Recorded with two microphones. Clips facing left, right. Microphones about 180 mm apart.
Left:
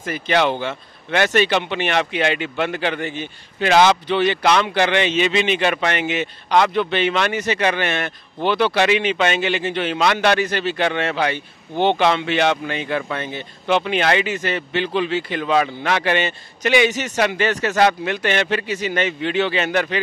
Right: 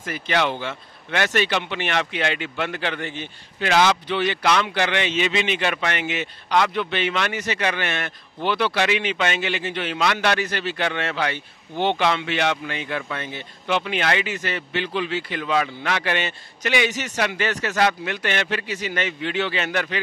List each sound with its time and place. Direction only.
0.0 s a man's voice: 25° left (ahead or behind)
3.6 s a man's voice: 25° left (ahead or behind)